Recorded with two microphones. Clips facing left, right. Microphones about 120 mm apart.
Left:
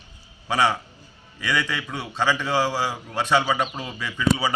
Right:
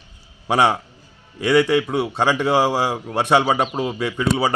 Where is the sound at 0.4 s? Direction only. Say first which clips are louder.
Right 5 dB; 55° right (ahead or behind).